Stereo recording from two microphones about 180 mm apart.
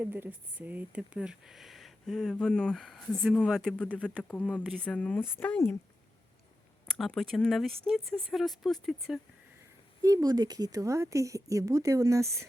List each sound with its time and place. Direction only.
0.0 s speech: 10° right (ahead or behind); by 5.7 s 10° left (ahead or behind)
6.8 s speech: 5° left (ahead or behind)
10.0 s a woman's voice: 20° right (ahead or behind)